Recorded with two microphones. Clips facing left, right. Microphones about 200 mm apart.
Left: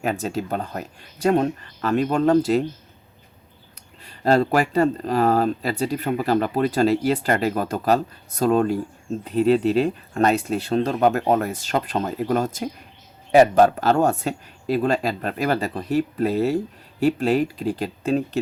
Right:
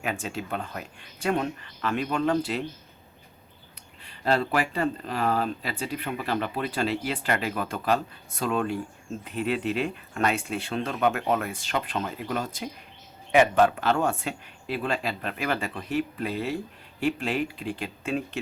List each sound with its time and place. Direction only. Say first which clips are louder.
0.0 s speech: left 7 dB; 40° left (ahead or behind)
4.0 s speech: left 7 dB; 40° left (ahead or behind)